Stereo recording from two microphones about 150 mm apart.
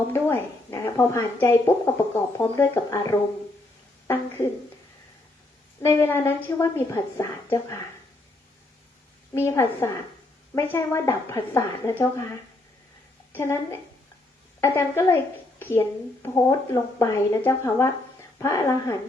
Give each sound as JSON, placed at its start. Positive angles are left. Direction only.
{"t": 0.1, "sound": "a woman's voice", "side_deg": 20}
{"t": 5.8, "sound": "a woman's voice", "side_deg": 15}
{"t": 9.3, "sound": "a woman's voice", "side_deg": 15}
{"t": 13.3, "sound": "a woman's voice", "side_deg": 15}